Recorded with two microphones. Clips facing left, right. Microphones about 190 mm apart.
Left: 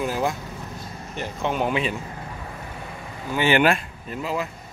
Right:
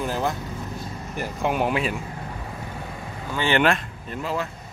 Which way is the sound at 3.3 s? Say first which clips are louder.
Left 2 dB; 15° left (ahead or behind).